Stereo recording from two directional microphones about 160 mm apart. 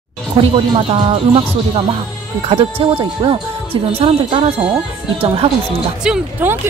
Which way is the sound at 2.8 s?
35° right (ahead or behind).